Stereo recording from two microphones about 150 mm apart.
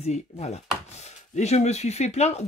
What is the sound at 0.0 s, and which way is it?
Speech, 45° left (ahead or behind).